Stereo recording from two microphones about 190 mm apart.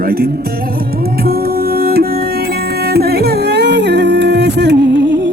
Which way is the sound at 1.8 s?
55° right (ahead or behind).